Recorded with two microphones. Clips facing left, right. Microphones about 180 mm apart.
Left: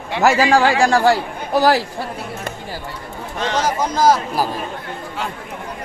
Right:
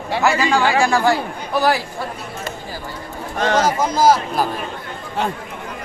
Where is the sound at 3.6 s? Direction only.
10° right (ahead or behind).